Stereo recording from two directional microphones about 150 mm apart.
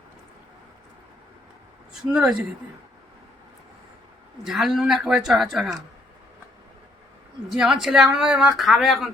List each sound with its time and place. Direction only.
1.9 s a woman's voice: 5° right (ahead or behind)
4.4 s a woman's voice: centre (ahead or behind)
7.5 s a woman's voice: 5° right (ahead or behind)